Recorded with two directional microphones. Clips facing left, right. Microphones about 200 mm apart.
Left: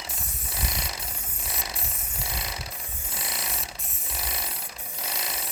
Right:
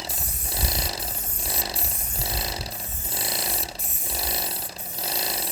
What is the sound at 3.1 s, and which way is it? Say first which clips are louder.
Mechanisms: right 5 dB; 35° right (ahead or behind).